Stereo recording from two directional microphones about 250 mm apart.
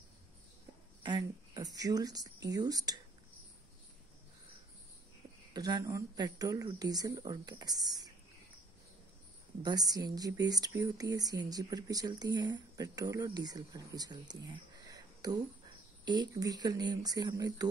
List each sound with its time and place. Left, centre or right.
1.0 s speech: centre
5.5 s speech: centre
9.6 s speech: centre
14.9 s a sound: centre
16.1 s speech: centre